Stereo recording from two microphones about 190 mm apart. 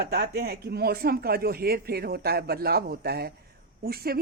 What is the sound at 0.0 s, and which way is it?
Speech, 55° right (ahead or behind).